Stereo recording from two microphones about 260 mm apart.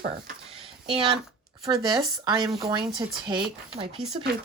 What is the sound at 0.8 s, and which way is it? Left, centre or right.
Speech, centre.